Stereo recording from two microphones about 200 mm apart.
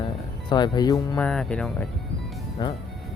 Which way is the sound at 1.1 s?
5° left (ahead or behind).